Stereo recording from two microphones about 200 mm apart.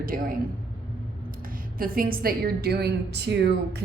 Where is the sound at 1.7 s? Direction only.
45° right (ahead or behind).